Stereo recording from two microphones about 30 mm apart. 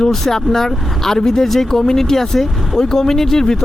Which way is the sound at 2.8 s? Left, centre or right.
Centre.